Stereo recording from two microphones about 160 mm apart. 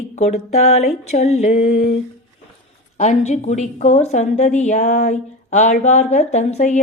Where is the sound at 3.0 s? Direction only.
45° left (ahead or behind).